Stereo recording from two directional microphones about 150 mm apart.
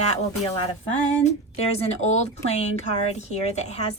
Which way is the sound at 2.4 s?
45° left (ahead or behind).